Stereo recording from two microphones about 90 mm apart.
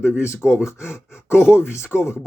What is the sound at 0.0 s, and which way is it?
Speech, 30° left (ahead or behind).